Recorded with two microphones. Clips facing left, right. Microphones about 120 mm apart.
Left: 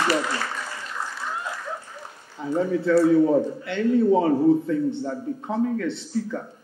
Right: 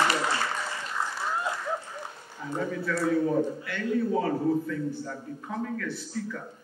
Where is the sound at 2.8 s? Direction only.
30° left (ahead or behind).